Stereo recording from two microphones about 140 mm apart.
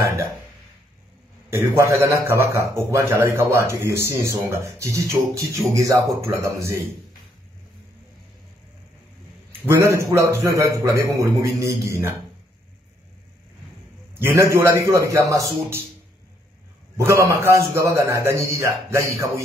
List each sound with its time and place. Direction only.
1.5 s a man's voice: 20° right (ahead or behind)
9.5 s a man's voice: 20° right (ahead or behind)
14.1 s a man's voice: 15° right (ahead or behind)
16.9 s a man's voice: 20° right (ahead or behind)